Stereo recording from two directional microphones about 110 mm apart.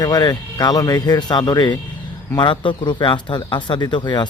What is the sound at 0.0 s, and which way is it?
Speech, 35° left (ahead or behind).